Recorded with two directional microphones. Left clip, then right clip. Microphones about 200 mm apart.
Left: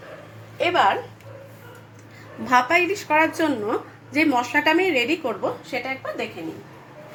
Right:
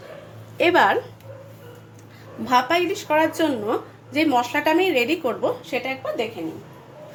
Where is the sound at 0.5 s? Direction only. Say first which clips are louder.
Right 3 dB; 45° right (ahead or behind).